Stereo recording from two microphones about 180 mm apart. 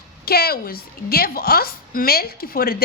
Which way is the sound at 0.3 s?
60° left (ahead or behind).